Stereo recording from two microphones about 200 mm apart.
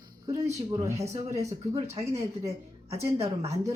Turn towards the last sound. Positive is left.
turn(degrees=-30)  # may be behind; listen again after turning